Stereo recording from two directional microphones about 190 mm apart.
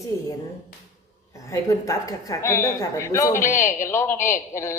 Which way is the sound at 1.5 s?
15° left (ahead or behind).